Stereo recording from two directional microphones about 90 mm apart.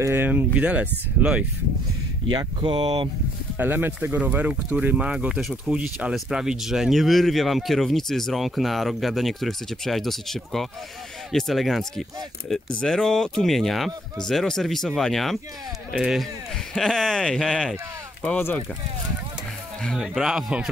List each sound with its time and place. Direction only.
0.0 s speech: 25° right (ahead or behind)
2.3 s speech: 55° right (ahead or behind)
3.5 s speech: 20° right (ahead or behind); by 17.7 s 5° left (ahead or behind)
18.2 s speech: 20° left (ahead or behind)
20.0 s speech: 5° right (ahead or behind)